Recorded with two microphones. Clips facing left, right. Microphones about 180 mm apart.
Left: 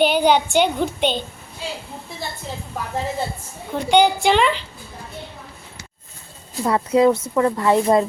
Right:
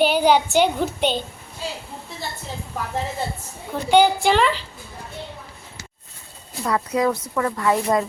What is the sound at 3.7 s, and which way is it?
Speech, 5° right (ahead or behind).